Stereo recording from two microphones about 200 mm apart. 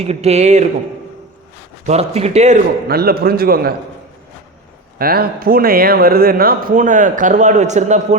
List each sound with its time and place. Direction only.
0.0 s speech: 30° right (ahead or behind)
1.9 s speech: 30° right (ahead or behind)
2.8 s speech: 50° right (ahead or behind)
4.9 s speech: 50° right (ahead or behind)